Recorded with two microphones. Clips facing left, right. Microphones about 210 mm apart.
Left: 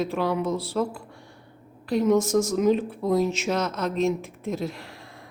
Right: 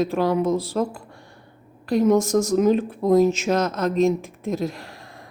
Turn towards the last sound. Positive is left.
turn(degrees=-40)  # may be behind; listen again after turning